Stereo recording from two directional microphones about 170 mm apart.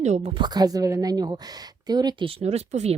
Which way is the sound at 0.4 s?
25° right (ahead or behind).